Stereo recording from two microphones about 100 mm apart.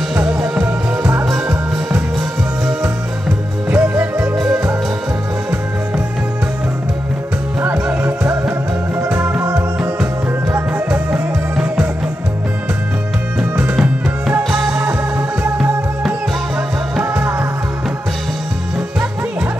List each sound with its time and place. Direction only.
0.1 s music: 10° right (ahead or behind)
3.3 s music: 15° right (ahead or behind)
7.6 s music: 20° right (ahead or behind)
14.7 s music: 15° right (ahead or behind)
17.0 s music: 20° right (ahead or behind)